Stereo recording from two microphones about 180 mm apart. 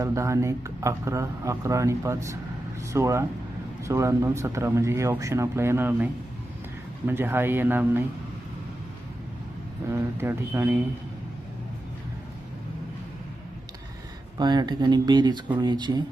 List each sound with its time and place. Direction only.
0.0 s speech: 15° right (ahead or behind)
7.1 s speech: 10° right (ahead or behind)
9.9 s speech: 10° right (ahead or behind)
14.3 s speech: 25° right (ahead or behind)